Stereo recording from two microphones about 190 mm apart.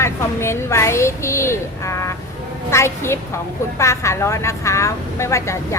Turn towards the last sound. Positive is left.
turn(degrees=15)  # may be behind; listen again after turning